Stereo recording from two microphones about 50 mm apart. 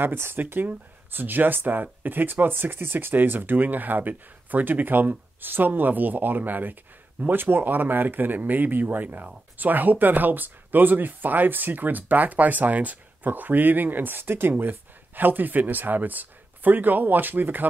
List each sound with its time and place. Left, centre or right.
0.0 s speech: right